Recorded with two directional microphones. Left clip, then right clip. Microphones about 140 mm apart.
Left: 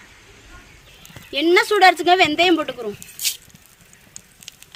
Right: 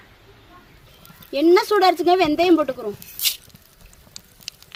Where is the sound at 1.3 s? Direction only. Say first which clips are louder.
Even; 55° right (ahead or behind).